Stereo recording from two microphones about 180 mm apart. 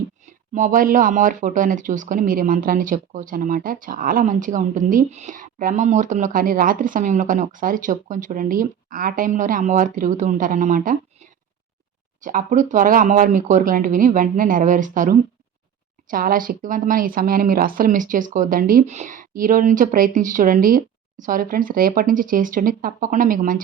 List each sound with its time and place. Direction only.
0.5 s speech: 45° right (ahead or behind)
12.2 s speech: 45° right (ahead or behind)